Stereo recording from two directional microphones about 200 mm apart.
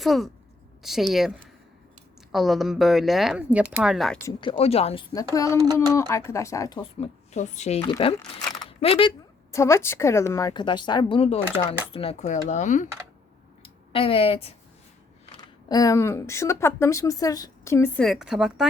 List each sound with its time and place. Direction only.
0.0 s a woman's voice: centre (ahead or behind)
2.3 s speech: centre (ahead or behind)
4.2 s speech: 20° left (ahead or behind)
5.1 s speech: 15° left (ahead or behind)
5.5 s a child's voice: 20° right (ahead or behind)
5.9 s speech: 15° left (ahead or behind)
7.3 s speech: 35° left (ahead or behind)
8.5 s a sound: 25° left (ahead or behind)
9.5 s speech: 15° left (ahead or behind); by 12.9 s 40° left (ahead or behind)
13.6 s a sound: 30° left (ahead or behind)
15.4 s speech: 20° left (ahead or behind); by 18.6 s 5° right (ahead or behind)